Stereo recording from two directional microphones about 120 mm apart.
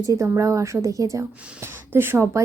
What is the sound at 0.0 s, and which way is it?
Speech, 30° right (ahead or behind).